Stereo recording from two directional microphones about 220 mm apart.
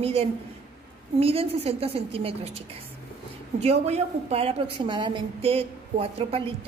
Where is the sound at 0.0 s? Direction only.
25° right (ahead or behind).